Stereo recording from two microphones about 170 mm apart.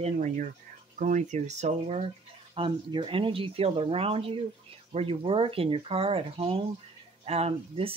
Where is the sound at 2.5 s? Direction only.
30° right (ahead or behind).